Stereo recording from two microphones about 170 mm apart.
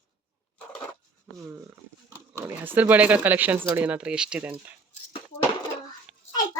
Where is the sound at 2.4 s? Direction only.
15° right (ahead or behind).